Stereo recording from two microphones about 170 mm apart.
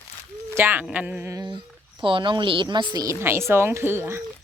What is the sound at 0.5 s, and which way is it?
Speech, 10° right (ahead or behind).